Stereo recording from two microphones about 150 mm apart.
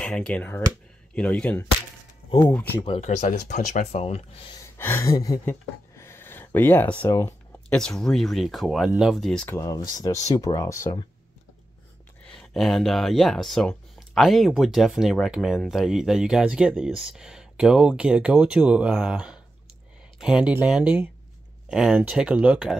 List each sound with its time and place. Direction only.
0.0 s speech: 5° left (ahead or behind)
3.0 s speech: 50° left (ahead or behind)
4.7 s speech: 15° left (ahead or behind)
7.7 s speech: 5° left (ahead or behind)
9.6 s speech: 25° left (ahead or behind)
12.3 s speech: centre (ahead or behind)